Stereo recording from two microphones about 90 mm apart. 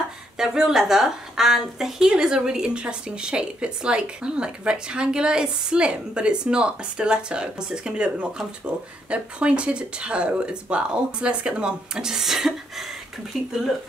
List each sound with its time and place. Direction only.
0.4 s a woman's voice: 5° right (ahead or behind)